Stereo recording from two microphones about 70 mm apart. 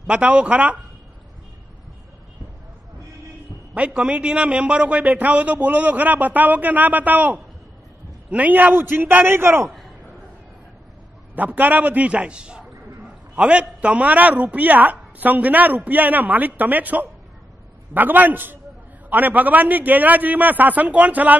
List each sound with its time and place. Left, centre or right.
0.0 s speech: centre
3.7 s speech: centre; by 9.7 s right
11.3 s speech: right